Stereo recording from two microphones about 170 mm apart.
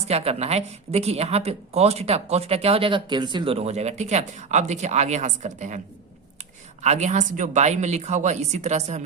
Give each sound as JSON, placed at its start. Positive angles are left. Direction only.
{"t": 0.0, "sound": "a woman's voice", "side_deg": -40}
{"t": 6.8, "sound": "a woman's voice", "side_deg": -40}